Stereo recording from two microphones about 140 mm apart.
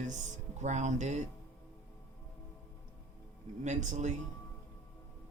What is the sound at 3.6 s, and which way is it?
Speech, 60° right (ahead or behind).